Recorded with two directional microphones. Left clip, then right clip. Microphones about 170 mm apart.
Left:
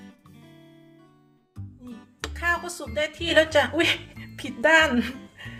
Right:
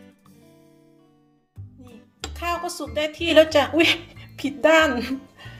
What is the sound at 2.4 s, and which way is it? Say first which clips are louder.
A woman's voice: even; 10° right (ahead or behind).